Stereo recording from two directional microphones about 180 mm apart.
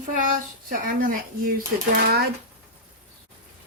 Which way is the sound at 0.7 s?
50° right (ahead or behind).